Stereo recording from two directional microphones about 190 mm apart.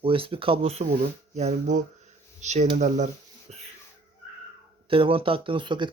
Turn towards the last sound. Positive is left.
turn(degrees=-25)  # may be behind; listen again after turning